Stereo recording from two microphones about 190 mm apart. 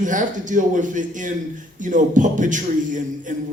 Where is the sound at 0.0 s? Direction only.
40° right (ahead or behind).